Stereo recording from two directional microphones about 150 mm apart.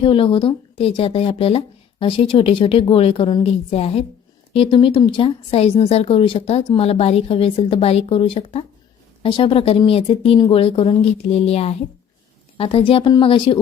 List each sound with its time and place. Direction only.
0.0 s speech: 35° left (ahead or behind)